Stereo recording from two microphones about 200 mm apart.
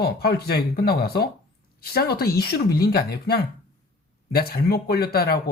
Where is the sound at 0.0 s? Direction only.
50° left (ahead or behind).